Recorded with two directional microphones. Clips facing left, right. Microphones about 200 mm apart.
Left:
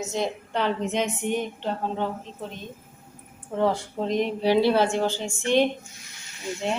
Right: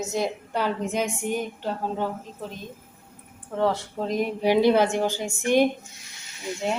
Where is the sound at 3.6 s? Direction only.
Centre (ahead or behind).